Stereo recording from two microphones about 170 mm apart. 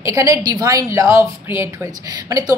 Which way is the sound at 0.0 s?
20° right (ahead or behind).